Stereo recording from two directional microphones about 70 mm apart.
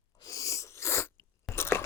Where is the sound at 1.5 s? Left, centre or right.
Left.